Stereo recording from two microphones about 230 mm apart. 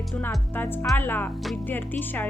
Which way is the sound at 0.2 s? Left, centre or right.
Centre.